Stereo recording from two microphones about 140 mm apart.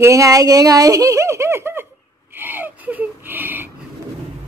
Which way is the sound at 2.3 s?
15° right (ahead or behind).